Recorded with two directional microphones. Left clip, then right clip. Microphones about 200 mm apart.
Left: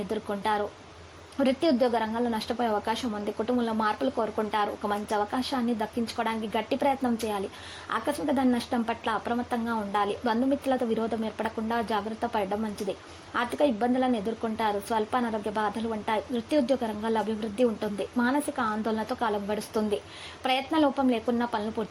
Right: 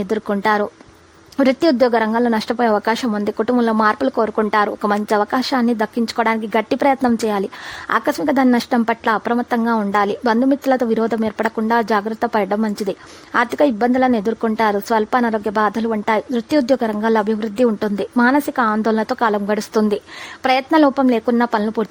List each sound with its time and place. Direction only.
0.1 s a woman's voice: 40° right (ahead or behind)